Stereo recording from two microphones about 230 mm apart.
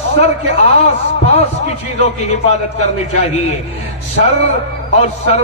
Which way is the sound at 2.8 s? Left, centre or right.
Left.